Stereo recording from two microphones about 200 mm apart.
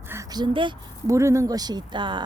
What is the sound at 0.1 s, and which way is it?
A woman's voice, 15° right (ahead or behind).